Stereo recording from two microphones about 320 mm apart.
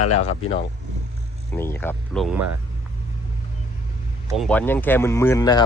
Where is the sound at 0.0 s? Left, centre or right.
Left.